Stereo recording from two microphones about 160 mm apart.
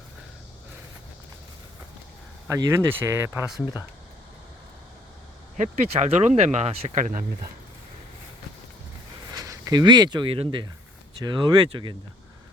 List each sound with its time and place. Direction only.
2.5 s speech: 15° right (ahead or behind)
5.5 s speech: 45° right (ahead or behind)
9.3 s speech: 20° right (ahead or behind)